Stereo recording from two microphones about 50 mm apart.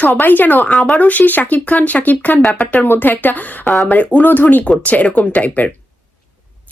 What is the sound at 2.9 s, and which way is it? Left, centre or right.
Speech, left.